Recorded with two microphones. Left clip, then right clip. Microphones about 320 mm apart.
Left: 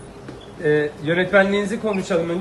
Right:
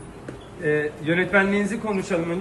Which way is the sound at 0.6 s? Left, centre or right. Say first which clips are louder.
Left 4 dB; left.